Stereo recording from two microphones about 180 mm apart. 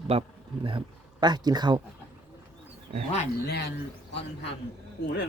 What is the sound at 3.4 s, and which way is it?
Speech, 65° left (ahead or behind).